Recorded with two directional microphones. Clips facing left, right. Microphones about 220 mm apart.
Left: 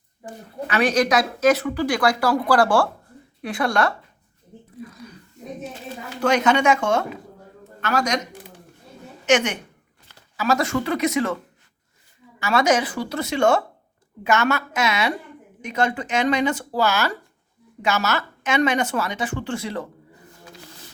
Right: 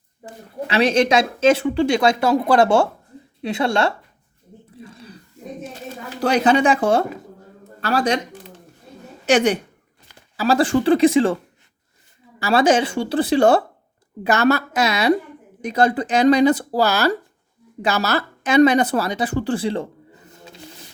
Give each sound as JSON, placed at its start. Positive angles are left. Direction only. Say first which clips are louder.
{"t": 0.7, "sound": "speech", "louder": "right 3 dB", "side_deg": -25}
{"t": 4.8, "sound": "a sound", "louder": "left 2 dB", "side_deg": -30}
{"t": 6.1, "sound": "speech", "louder": "right 2 dB", "side_deg": -35}
{"t": 12.4, "sound": "speech", "louder": "right 3 dB", "side_deg": -30}